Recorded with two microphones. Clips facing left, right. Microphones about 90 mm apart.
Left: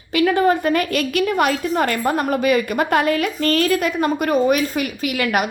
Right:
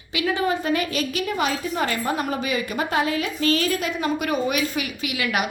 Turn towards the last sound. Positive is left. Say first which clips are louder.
# left 5 dB
turn(degrees=45)  # may be behind; listen again after turning